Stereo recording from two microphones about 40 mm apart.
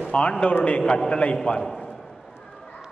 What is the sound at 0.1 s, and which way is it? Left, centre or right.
A man's voice, left.